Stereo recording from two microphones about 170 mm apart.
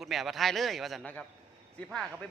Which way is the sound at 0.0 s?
Centre (ahead or behind).